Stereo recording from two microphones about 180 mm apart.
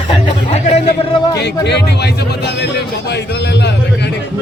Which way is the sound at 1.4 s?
70° left (ahead or behind).